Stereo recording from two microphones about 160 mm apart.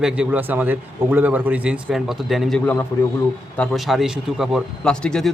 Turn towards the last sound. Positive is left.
turn(degrees=5)  # may be behind; listen again after turning